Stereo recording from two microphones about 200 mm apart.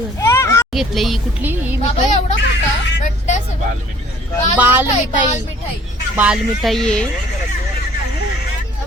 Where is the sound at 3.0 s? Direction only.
35° left (ahead or behind).